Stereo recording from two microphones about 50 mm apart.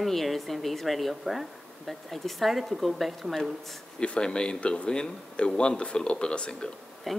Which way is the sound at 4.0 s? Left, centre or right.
Centre.